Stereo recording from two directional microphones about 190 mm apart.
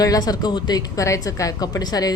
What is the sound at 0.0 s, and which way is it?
A woman's voice, 20° left (ahead or behind).